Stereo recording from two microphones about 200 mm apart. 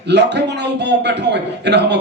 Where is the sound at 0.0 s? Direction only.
60° right (ahead or behind).